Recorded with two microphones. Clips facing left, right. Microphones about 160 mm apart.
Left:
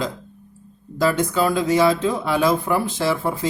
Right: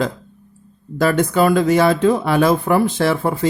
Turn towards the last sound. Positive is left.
turn(degrees=-60)  # may be behind; listen again after turning